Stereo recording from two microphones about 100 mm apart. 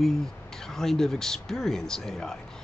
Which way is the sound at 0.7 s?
5° left (ahead or behind).